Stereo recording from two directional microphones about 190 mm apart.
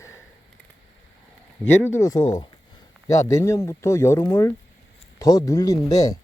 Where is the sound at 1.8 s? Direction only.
15° left (ahead or behind).